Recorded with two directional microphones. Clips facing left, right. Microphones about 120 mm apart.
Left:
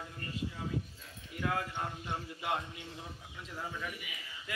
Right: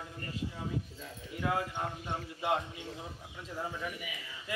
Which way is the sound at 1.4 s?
20° right (ahead or behind).